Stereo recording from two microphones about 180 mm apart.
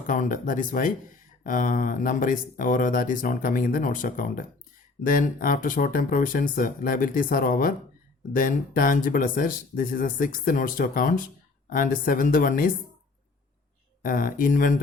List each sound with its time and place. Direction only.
0.1 s speech: 45° left (ahead or behind)
14.0 s speech: 50° left (ahead or behind)